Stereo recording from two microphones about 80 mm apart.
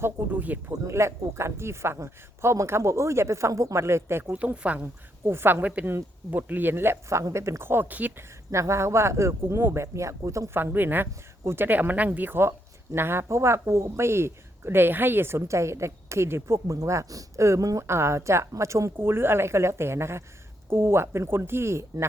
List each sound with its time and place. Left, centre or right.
0.0 s speech: right
0.7 s speech: right
4.3 s speech: centre
5.2 s speech: right
8.5 s speech: right
10.6 s speech: right